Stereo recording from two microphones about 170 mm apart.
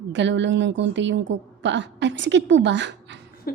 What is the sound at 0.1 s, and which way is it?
A woman's voice, 90° right.